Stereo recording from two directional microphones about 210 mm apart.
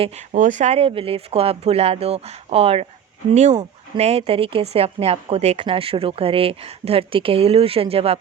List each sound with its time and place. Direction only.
0.3 s a woman's voice: 35° right (ahead or behind)